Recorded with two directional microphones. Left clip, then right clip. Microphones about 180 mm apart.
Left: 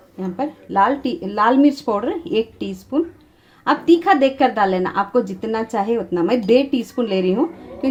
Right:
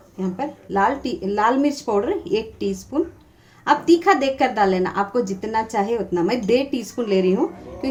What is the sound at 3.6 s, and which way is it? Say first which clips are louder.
A woman's voice: left 1 dB; 35° left (ahead or behind).